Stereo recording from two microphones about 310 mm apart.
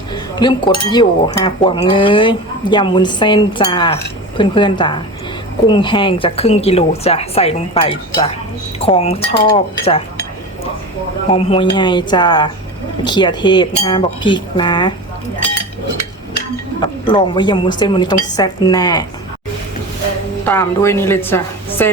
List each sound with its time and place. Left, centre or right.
0.1 s a woman's voice: centre
11.3 s speech: centre
16.8 s speech: centre
20.4 s a woman's voice: centre